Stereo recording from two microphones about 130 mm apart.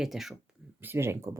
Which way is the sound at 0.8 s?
20° right (ahead or behind).